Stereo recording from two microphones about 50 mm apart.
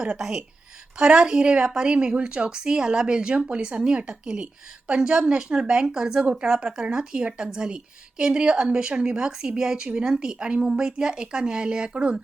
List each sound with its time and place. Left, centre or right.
0.0 s a woman's voice: centre